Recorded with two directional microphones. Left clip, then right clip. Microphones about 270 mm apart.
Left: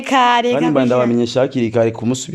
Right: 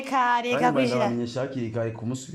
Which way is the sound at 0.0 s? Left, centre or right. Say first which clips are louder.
Left 10 dB; left.